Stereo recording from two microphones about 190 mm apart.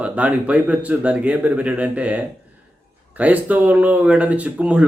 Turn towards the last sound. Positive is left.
turn(degrees=-5)  # may be behind; listen again after turning